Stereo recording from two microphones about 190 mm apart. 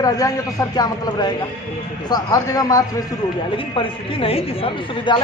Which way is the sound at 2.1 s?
20° left (ahead or behind).